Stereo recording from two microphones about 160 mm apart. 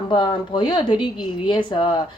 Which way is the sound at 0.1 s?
30° left (ahead or behind).